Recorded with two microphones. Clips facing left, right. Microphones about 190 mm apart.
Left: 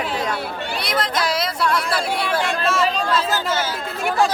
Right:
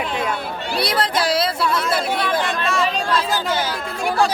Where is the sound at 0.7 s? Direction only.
35° right (ahead or behind).